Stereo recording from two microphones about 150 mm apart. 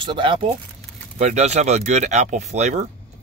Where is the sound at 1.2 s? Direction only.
50° right (ahead or behind).